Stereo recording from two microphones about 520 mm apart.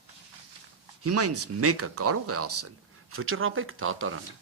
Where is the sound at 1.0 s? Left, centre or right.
Right.